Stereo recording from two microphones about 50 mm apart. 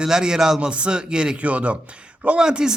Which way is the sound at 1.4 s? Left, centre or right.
Right.